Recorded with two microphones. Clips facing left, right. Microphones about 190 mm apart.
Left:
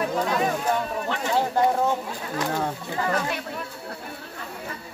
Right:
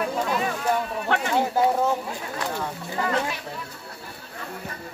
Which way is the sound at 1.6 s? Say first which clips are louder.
Even; 5° right (ahead or behind).